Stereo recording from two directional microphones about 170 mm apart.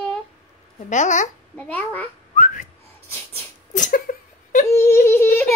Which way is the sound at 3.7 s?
50° left (ahead or behind).